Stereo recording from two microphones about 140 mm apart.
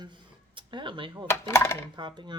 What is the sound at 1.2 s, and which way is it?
Speech, 20° left (ahead or behind).